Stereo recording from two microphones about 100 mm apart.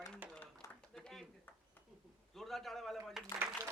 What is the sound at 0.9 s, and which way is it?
Speech, 5° left (ahead or behind).